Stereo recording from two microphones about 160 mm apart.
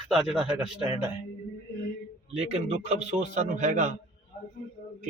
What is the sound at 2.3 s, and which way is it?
A man's voice, 40° right (ahead or behind).